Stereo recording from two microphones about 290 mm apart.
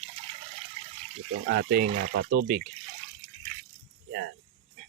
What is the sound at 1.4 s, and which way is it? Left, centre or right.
Speech, right.